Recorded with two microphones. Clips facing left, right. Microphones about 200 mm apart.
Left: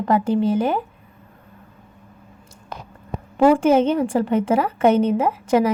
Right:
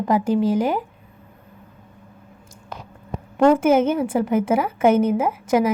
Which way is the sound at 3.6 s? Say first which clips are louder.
Left 1 dB; 10° right (ahead or behind).